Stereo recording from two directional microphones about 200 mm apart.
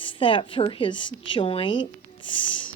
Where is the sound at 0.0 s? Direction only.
25° left (ahead or behind).